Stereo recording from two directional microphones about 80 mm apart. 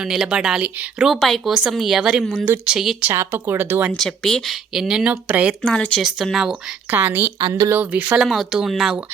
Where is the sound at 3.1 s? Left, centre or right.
Right.